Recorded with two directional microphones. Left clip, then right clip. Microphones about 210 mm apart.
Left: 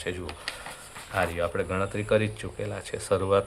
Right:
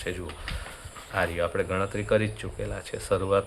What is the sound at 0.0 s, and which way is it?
Speech, 5° left (ahead or behind).